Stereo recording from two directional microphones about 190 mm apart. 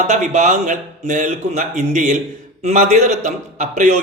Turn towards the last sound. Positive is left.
turn(degrees=-40)  # may be behind; listen again after turning